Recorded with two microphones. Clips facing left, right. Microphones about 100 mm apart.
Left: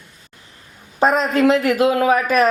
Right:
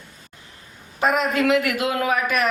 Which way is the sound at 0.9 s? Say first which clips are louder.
Left 4 dB; 35° left (ahead or behind).